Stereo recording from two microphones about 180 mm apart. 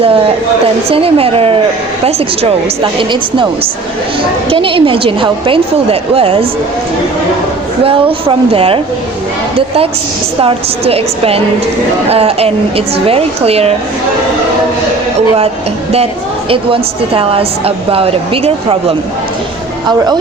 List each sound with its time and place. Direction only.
0.9 s a woman's voice: 30° right (ahead or behind)
4.4 s a woman's voice: 30° right (ahead or behind)
7.9 s a woman's voice: 30° right (ahead or behind)
17.1 s a woman's voice: 30° right (ahead or behind)